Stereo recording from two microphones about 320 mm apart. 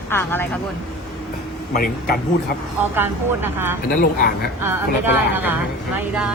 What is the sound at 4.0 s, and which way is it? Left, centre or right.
Speech, left.